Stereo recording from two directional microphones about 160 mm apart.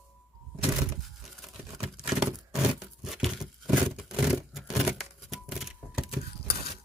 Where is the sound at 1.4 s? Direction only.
Centre (ahead or behind).